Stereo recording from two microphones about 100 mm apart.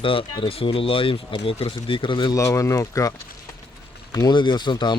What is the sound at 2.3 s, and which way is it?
Speech, 30° left (ahead or behind).